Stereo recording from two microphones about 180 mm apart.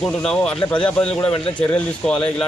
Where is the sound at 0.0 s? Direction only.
5° left (ahead or behind).